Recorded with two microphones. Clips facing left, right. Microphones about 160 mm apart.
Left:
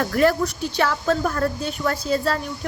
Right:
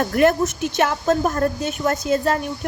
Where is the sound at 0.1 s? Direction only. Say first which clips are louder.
Right 2 dB; 20° right (ahead or behind).